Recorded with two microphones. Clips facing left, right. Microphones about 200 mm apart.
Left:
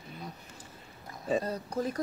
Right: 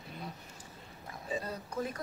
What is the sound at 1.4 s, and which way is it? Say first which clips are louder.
Speech: left 5 dB; 40° left (ahead or behind).